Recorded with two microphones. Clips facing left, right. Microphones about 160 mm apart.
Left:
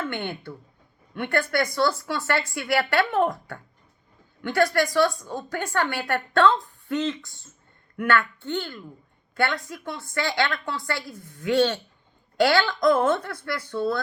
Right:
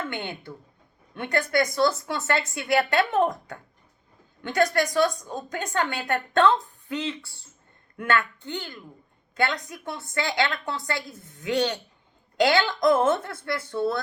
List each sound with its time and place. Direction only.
0.1 s a woman's voice: 20° right (ahead or behind)
7.9 s a woman's voice: 20° right (ahead or behind)